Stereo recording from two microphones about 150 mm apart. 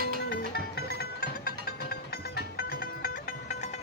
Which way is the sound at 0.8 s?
90° left.